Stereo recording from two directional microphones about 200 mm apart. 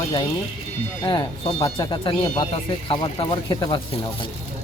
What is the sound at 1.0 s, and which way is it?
Speech, 25° left (ahead or behind).